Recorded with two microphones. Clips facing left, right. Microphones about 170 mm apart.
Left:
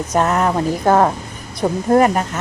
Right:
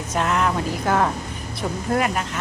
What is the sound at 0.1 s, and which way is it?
Speech, 40° left (ahead or behind).